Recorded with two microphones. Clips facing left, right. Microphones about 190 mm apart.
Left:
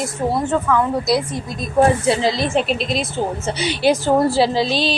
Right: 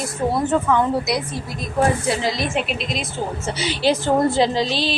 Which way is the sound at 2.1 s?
30° left (ahead or behind).